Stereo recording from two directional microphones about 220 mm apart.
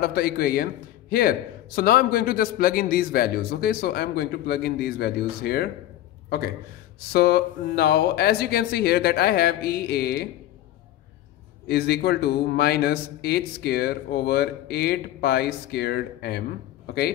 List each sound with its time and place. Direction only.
0.0 s speech: 45° left (ahead or behind)
1.8 s speech: 40° left (ahead or behind)
7.0 s speech: 45° left (ahead or behind)
11.6 s speech: 45° left (ahead or behind)